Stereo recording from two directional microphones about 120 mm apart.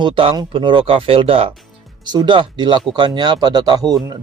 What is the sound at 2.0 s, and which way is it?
Speech, 35° right (ahead or behind).